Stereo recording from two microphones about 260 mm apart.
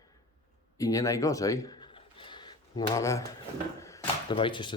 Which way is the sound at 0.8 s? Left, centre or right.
Centre.